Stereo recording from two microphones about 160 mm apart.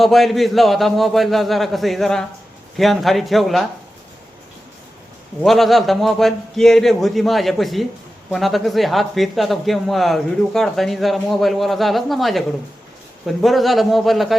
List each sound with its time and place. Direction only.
0.0 s speech: centre (ahead or behind)
5.4 s speech: centre (ahead or behind)